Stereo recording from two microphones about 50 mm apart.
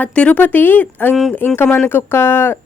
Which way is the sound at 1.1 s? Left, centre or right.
Centre.